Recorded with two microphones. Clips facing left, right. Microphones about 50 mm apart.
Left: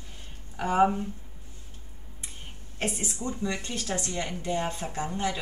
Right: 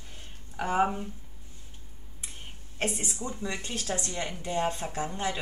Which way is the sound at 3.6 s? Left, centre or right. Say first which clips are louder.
Left 1 dB; right.